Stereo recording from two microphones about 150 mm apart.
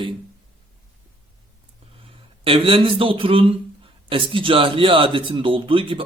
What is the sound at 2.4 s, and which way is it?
Speech, 40° right (ahead or behind).